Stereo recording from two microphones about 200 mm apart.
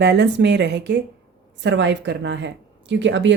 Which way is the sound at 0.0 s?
55° right (ahead or behind).